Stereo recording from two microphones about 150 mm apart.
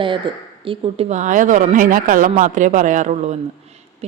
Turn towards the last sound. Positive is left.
turn(degrees=-50)  # may be behind; listen again after turning